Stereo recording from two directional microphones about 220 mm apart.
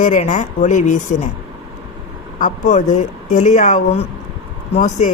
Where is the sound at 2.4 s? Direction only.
35° left (ahead or behind).